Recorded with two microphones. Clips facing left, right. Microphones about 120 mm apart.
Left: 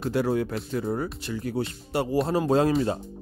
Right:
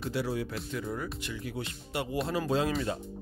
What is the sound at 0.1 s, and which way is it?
Speech, 50° left (ahead or behind).